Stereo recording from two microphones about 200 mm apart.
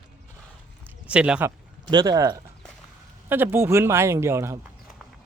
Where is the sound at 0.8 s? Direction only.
5° right (ahead or behind).